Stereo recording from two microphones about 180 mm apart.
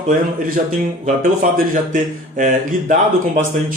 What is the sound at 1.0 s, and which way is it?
A man's voice, 45° right (ahead or behind).